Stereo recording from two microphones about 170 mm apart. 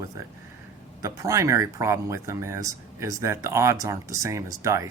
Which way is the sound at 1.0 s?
20° right (ahead or behind).